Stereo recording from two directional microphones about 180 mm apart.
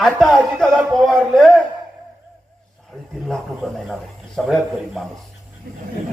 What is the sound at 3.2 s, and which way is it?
A man's voice, centre (ahead or behind).